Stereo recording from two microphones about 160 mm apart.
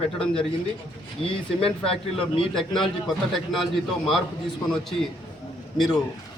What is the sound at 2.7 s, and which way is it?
A man's voice, centre (ahead or behind).